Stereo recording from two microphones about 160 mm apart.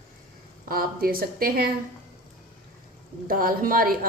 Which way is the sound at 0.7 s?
65° right (ahead or behind).